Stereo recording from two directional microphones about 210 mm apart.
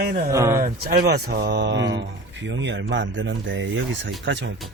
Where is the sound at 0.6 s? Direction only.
50° right (ahead or behind).